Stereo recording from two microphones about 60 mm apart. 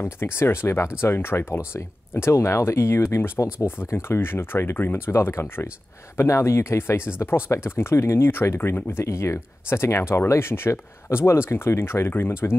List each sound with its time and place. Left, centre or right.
0.0 s speech: left